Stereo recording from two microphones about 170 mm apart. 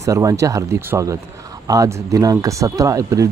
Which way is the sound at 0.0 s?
20° right (ahead or behind).